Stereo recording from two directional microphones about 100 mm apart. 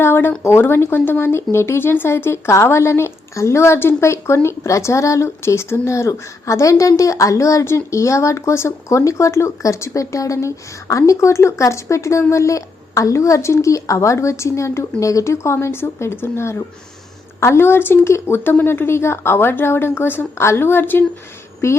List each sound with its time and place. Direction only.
0.0 s speech: 25° left (ahead or behind)